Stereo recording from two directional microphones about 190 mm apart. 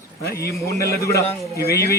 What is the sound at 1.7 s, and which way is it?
Speech, 15° left (ahead or behind).